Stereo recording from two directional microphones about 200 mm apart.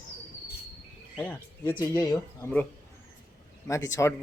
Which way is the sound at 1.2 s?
10° left (ahead or behind).